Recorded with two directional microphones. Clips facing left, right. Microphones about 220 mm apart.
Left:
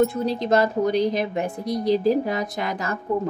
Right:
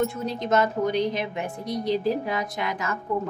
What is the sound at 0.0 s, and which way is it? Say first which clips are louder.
A woman's voice: left 5 dB; 35° left (ahead or behind).